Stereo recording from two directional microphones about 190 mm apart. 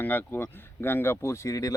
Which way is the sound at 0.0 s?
10° left (ahead or behind).